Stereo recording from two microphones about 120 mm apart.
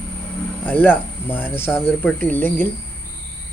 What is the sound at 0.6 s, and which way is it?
Speech, 15° left (ahead or behind).